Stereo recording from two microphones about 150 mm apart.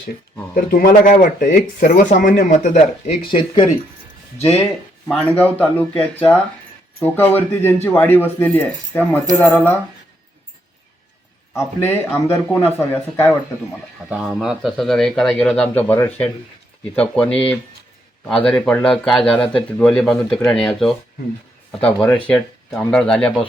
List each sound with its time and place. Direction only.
0.5 s speech: 75° left (ahead or behind); by 3.2 s 50° left (ahead or behind)
3.3 s speech: 30° left (ahead or behind)
5.0 s speech: 10° left (ahead or behind)
11.5 s speech: 15° left (ahead or behind)
14.1 s speech: centre (ahead or behind)
18.4 s speech: 5° left (ahead or behind)